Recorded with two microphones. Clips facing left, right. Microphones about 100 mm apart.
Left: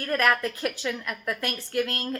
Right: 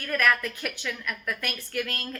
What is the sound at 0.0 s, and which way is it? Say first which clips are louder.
A woman's voice: left 2 dB; 30° left (ahead or behind).